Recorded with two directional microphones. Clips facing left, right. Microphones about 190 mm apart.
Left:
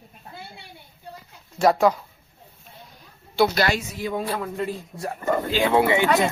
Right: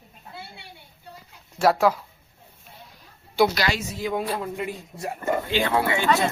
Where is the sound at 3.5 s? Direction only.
50° left (ahead or behind).